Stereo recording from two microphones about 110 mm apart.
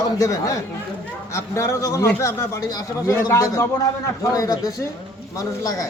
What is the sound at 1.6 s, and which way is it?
A man's voice, 30° left (ahead or behind).